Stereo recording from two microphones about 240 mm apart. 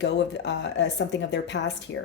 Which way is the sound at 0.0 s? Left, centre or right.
Left.